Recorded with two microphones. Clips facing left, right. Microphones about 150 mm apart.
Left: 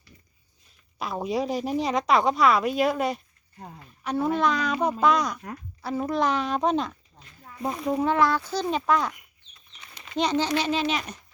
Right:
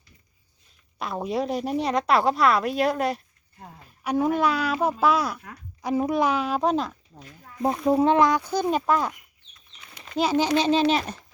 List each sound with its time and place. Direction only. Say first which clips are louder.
0.9 s a woman's voice: even; centre (ahead or behind)
4.0 s speech: right 2 dB; 10° right (ahead or behind)
7.6 s speech: right 5 dB; 30° right (ahead or behind); by 9.1 s 10° right (ahead or behind)
9.8 s a sound: right 1 dB; 5° right (ahead or behind)
10.5 s a child's voice: right 5 dB; 30° right (ahead or behind)